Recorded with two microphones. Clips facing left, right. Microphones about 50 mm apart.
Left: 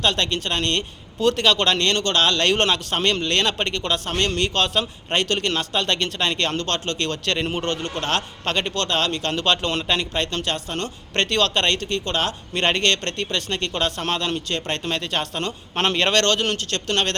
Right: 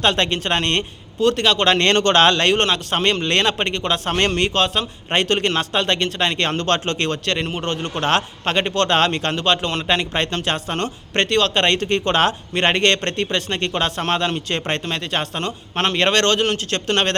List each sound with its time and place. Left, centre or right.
0.0 s a man's voice: right
1.2 s a man's voice: centre
1.8 s speech: right
2.4 s a man's voice: centre
4.0 s a man's voice: right
4.5 s a man's voice: centre
7.3 s a man's voice: centre
7.7 s a man's voice: centre
9.3 s a man's voice: centre
9.8 s a man's voice: centre
11.1 s a man's voice: centre
11.9 s speech: right
12.5 s a man's voice: centre
16.8 s a man's voice: right